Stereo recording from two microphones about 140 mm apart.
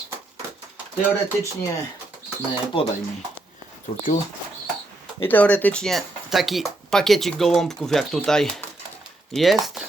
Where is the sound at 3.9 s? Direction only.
45° left (ahead or behind).